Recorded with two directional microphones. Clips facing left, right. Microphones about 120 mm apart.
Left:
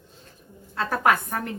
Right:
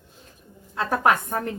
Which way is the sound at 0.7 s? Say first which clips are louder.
Right 2 dB; 15° right (ahead or behind).